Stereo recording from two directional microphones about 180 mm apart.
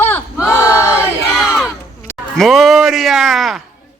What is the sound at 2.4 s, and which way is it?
Speech, centre (ahead or behind).